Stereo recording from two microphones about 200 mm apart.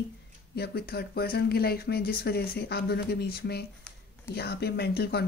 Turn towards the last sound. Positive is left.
turn(degrees=55)  # may be behind; listen again after turning